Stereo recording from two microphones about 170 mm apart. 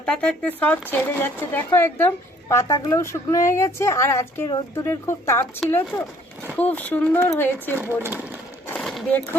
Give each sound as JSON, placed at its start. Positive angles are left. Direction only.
{"t": 0.0, "sound": "speech", "side_deg": 5}
{"t": 7.8, "sound": "speech", "side_deg": -15}
{"t": 8.6, "sound": "a sound", "side_deg": 5}